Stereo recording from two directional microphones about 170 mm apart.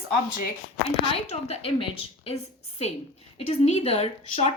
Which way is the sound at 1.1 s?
35° left (ahead or behind).